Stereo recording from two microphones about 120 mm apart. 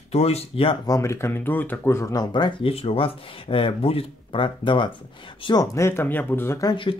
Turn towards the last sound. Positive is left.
turn(degrees=45)  # may be behind; listen again after turning